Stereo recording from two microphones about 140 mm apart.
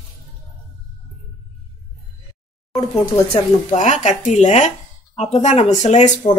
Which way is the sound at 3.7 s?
60° left (ahead or behind).